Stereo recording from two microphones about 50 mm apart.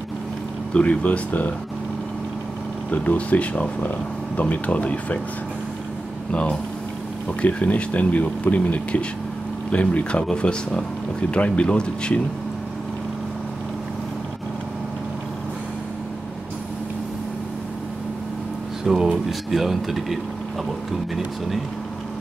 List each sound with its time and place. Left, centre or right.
0.7 s speech: left
2.9 s speech: left
7.4 s speech: left
18.9 s speech: centre